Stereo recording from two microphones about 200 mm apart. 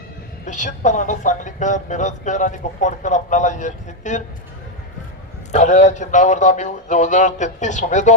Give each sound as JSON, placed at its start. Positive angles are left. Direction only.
{"t": 0.4, "sound": "speech", "side_deg": 40}
{"t": 5.5, "sound": "speech", "side_deg": 35}